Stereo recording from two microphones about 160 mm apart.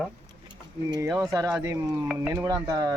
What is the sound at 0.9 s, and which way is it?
Speech, 20° right (ahead or behind).